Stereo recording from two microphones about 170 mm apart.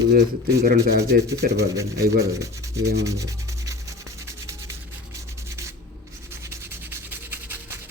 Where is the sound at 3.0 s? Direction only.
20° right (ahead or behind).